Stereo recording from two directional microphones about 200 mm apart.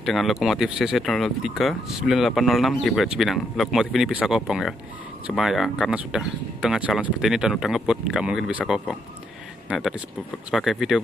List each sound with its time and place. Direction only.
0.0 s speech: centre (ahead or behind)